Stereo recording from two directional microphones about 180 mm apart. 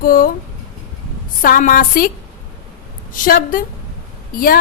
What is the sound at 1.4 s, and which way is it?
Speech, 50° left (ahead or behind).